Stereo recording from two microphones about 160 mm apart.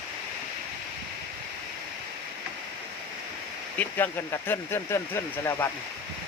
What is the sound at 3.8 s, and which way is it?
Speech, 10° left (ahead or behind).